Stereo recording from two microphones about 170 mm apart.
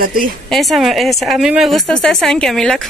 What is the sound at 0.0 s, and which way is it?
Speech, 60° right (ahead or behind).